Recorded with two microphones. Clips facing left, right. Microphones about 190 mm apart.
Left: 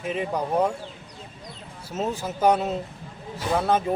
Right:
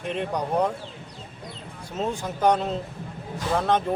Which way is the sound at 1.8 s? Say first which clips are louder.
Even; 5° left (ahead or behind).